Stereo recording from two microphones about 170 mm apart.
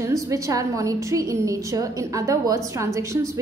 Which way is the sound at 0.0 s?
20° right (ahead or behind).